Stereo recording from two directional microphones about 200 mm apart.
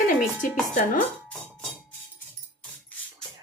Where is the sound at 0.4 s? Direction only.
40° left (ahead or behind).